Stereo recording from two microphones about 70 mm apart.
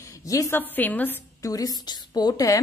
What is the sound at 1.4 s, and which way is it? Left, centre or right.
A woman's voice, left.